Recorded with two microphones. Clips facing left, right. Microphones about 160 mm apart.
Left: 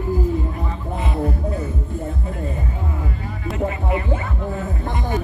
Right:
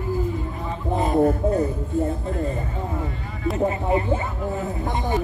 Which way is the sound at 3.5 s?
30° right (ahead or behind).